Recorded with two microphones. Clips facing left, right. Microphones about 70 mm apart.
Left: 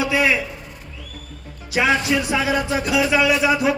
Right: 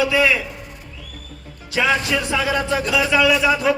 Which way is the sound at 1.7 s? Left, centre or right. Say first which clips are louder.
Left 1 dB; left.